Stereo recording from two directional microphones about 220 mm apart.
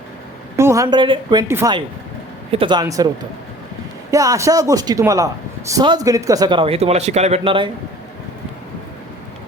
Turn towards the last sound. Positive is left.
turn(degrees=-25)  # may be behind; listen again after turning